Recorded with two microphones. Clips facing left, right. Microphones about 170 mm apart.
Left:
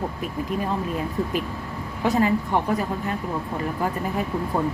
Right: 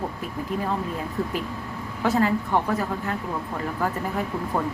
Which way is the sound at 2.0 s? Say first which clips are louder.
Left 1 dB; 15° left (ahead or behind).